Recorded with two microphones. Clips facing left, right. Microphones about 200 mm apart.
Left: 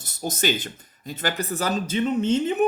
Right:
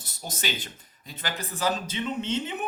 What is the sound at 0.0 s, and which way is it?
Speech, 45° left (ahead or behind).